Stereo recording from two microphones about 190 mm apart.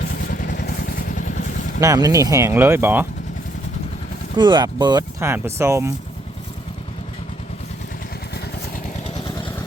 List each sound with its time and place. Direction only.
0.3 s vehicle: 50° left (ahead or behind)
1.8 s speech: 20° right (ahead or behind)
4.4 s speech: 25° right (ahead or behind)
9.0 s vehicle: 25° left (ahead or behind)